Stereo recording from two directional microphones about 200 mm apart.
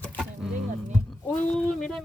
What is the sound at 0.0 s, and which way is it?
Music, 5° left (ahead or behind).